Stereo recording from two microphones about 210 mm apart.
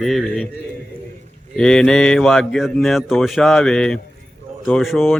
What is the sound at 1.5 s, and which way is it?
Speech, 5° left (ahead or behind).